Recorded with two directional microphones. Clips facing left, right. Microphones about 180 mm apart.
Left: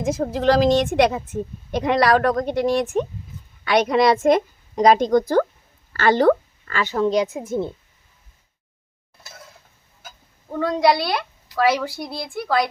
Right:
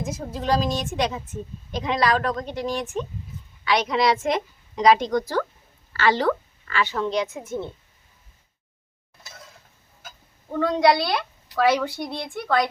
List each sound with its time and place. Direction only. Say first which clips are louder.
0.0 s a woman's voice: left 9 dB; 90° left; by 3.1 s 65° left (ahead or behind)
3.6 s a woman's voice: left 5 dB; 50° left (ahead or behind); by 7.7 s 35° left (ahead or behind)
10.5 s a woman's voice: left 1 dB; centre (ahead or behind)